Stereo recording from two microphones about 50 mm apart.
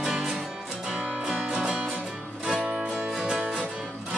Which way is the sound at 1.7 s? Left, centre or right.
Right.